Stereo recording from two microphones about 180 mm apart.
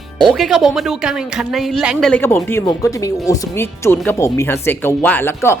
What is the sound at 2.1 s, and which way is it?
Speech, 10° left (ahead or behind).